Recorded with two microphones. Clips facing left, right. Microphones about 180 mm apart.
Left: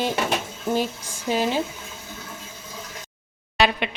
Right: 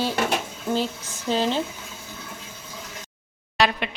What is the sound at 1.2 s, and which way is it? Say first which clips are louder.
Speech: even; 10° left (ahead or behind).